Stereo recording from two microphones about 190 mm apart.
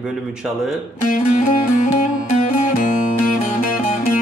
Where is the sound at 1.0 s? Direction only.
45° left (ahead or behind).